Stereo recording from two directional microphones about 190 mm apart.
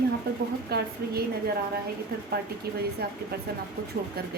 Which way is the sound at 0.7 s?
55° right (ahead or behind).